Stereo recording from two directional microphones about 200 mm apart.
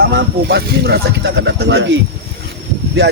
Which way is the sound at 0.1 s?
55° right (ahead or behind).